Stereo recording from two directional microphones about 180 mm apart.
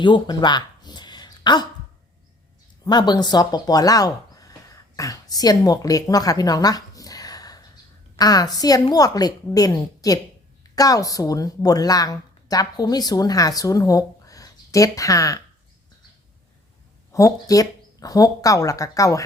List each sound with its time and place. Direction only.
0.0 s a sound: 25° left (ahead or behind)
2.8 s a woman's voice: 25° left (ahead or behind)
17.1 s a woman's voice: 20° left (ahead or behind)